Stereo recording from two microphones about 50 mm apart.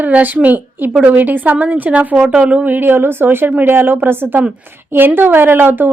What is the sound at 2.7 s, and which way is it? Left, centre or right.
A woman's voice, right.